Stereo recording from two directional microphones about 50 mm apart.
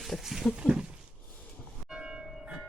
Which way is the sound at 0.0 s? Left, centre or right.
Centre.